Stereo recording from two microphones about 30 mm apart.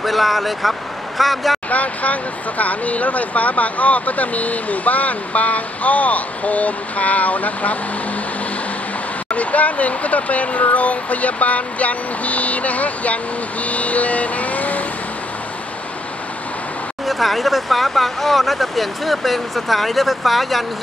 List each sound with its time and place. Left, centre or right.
0.0 s speech: centre
1.7 s speech: left
9.3 s speech: left
17.0 s speech: centre